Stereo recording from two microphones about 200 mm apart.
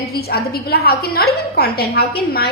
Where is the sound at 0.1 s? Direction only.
50° left (ahead or behind).